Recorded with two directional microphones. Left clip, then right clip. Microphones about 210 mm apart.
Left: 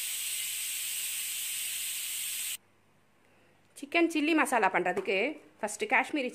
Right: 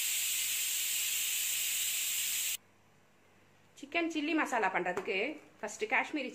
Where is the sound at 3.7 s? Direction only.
55° left (ahead or behind).